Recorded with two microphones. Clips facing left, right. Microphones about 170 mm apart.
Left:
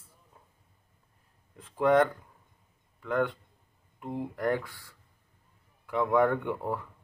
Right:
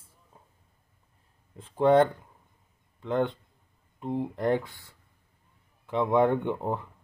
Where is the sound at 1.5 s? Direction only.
25° right (ahead or behind).